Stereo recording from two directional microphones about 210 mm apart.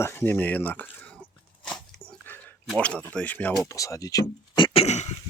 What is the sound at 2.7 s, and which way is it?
Speech, 5° left (ahead or behind).